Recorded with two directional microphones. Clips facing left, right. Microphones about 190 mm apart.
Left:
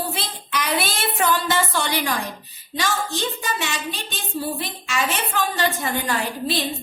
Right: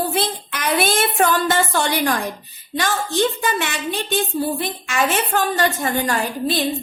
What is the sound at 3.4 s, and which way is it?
A woman's voice, 55° right (ahead or behind).